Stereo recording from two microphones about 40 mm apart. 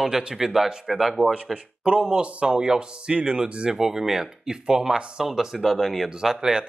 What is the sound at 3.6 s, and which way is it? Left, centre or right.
Speech, centre.